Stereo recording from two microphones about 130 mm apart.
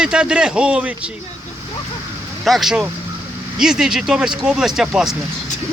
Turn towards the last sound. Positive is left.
turn(degrees=-5)  # may be behind; listen again after turning